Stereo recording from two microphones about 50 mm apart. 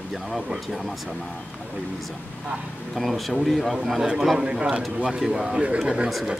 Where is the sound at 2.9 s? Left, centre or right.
Centre.